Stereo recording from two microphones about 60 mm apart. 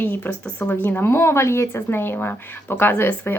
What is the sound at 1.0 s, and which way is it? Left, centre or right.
Speech, left.